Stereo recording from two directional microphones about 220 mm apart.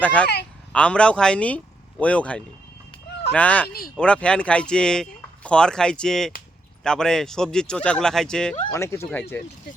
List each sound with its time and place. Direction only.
0.0 s speech: 5° left (ahead or behind)
3.7 s speech: 45° left (ahead or behind)
3.9 s speech: 5° left (ahead or behind)
8.6 s speech: 15° left (ahead or behind)